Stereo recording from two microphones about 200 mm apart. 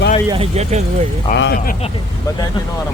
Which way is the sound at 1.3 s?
40° left (ahead or behind).